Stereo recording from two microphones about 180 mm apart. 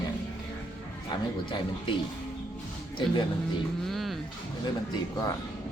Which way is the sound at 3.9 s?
Centre (ahead or behind).